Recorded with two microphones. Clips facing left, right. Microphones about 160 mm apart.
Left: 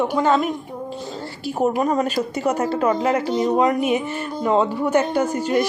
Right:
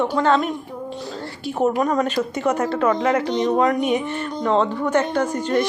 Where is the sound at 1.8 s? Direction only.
30° left (ahead or behind).